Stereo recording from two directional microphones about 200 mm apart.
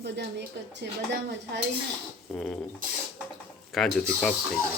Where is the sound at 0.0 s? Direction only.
60° right (ahead or behind).